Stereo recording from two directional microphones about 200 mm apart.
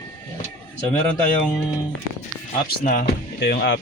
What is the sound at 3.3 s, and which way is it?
Speech, 60° left (ahead or behind).